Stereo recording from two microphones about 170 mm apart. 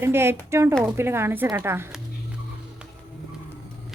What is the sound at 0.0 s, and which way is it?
Speech, 15° right (ahead or behind).